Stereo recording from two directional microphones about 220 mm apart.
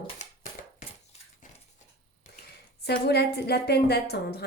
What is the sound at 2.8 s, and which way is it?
Speech, 45° left (ahead or behind).